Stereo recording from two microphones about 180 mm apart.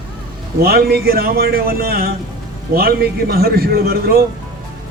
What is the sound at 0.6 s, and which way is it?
Speech, 60° right (ahead or behind).